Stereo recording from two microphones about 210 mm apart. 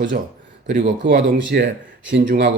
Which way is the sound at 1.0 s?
55° right (ahead or behind).